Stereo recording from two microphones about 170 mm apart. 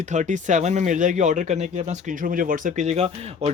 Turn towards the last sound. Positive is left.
turn(degrees=-40)  # may be behind; listen again after turning